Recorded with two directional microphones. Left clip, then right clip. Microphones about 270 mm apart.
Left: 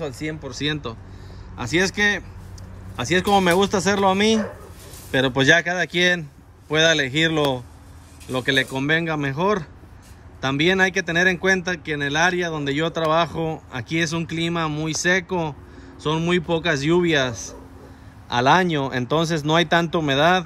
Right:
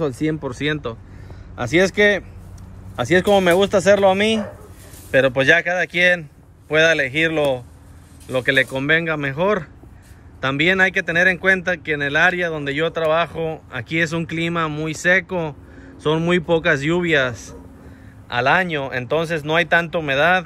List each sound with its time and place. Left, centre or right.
0.0 s speech: centre
0.7 s speech: centre